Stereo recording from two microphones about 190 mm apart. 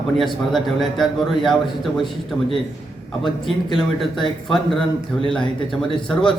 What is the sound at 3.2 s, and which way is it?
A man's voice, centre (ahead or behind).